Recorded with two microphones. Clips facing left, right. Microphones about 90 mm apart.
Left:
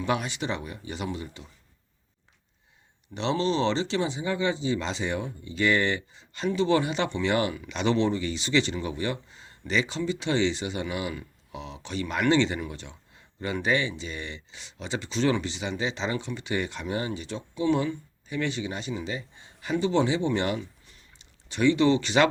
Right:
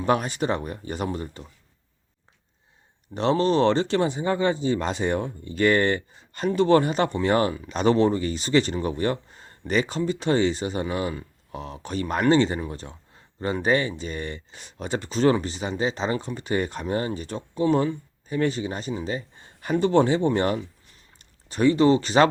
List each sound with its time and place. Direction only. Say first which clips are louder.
0.0 s speech: right 5 dB; 45° right (ahead or behind)
3.2 s speech: right 5 dB; 45° right (ahead or behind)